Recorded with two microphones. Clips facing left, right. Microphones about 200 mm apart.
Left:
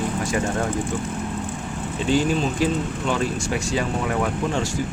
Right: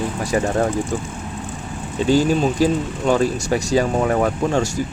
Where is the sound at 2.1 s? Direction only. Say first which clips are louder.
Right 4 dB; 40° right (ahead or behind).